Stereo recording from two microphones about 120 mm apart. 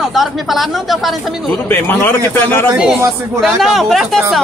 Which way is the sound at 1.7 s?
20° left (ahead or behind).